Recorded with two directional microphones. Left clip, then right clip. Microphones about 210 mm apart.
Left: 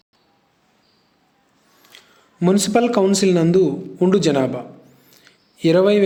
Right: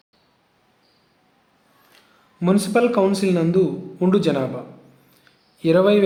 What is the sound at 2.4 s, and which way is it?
A man's voice, 25° left (ahead or behind).